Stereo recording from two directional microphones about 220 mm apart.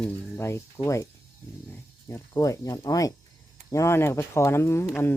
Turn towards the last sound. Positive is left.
turn(degrees=10)  # may be behind; listen again after turning